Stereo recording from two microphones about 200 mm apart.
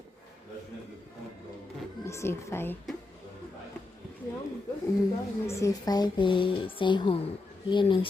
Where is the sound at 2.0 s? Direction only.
15° left (ahead or behind).